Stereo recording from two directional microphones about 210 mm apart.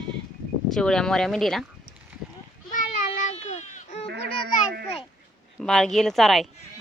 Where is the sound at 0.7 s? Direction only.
5° left (ahead or behind).